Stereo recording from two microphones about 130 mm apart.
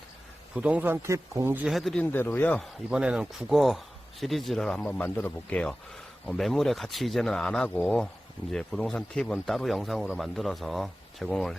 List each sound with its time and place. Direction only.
0.5 s speech: 10° right (ahead or behind)
1.6 s speech: centre (ahead or behind)
2.1 s speech: 15° left (ahead or behind)
2.6 s speech: 5° right (ahead or behind)